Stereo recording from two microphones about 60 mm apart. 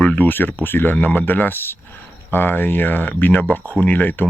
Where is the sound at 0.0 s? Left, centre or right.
Left.